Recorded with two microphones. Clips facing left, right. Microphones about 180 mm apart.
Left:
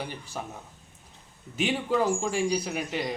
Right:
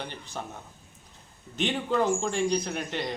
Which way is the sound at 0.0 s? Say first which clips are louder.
Left 1 dB; 5° left (ahead or behind).